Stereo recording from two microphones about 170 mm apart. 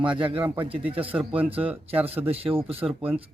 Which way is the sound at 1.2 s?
35° right (ahead or behind).